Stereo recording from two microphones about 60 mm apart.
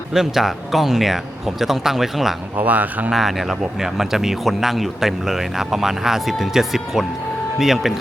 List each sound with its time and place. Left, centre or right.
0.1 s speech: centre
2.6 s speech: right
3.1 s speech: centre